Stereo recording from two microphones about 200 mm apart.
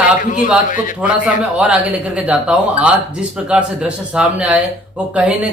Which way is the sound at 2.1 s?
5° right (ahead or behind).